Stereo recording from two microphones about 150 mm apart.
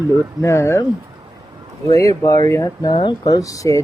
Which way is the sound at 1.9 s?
20° left (ahead or behind).